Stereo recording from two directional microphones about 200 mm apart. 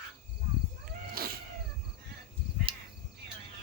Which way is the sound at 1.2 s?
50° right (ahead or behind).